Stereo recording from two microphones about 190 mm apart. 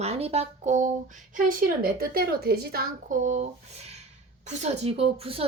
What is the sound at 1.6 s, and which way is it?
A woman's voice, 50° right (ahead or behind).